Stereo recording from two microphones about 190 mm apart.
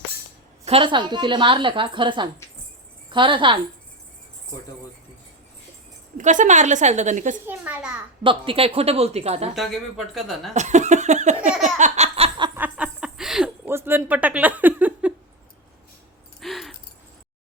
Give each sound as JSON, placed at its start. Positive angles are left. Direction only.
{"t": 0.6, "sound": "a woman's voice", "side_deg": -30}
{"t": 6.1, "sound": "speech", "side_deg": -40}
{"t": 7.4, "sound": "a child's voice", "side_deg": -10}
{"t": 8.2, "sound": "speech", "side_deg": -25}
{"t": 9.6, "sound": "speech", "side_deg": 0}
{"t": 10.5, "sound": "speech", "side_deg": -40}
{"t": 11.6, "sound": "a sound", "side_deg": -35}
{"t": 12.5, "sound": "a sound", "side_deg": -5}
{"t": 16.4, "sound": "keys jangling", "side_deg": 0}